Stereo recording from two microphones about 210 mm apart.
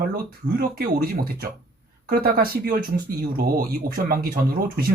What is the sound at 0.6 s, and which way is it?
Speech, 45° right (ahead or behind).